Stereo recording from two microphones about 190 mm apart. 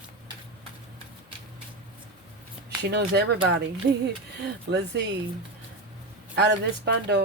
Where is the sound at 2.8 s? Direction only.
60° right (ahead or behind).